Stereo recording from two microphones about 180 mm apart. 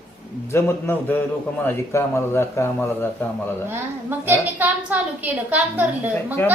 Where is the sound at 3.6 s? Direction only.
10° right (ahead or behind).